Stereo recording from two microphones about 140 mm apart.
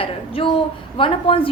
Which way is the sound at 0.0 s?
40° left (ahead or behind).